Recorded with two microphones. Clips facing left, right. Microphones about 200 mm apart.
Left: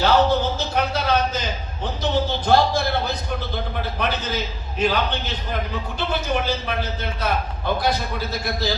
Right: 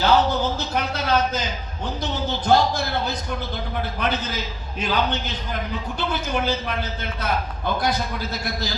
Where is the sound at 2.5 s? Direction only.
60° left (ahead or behind).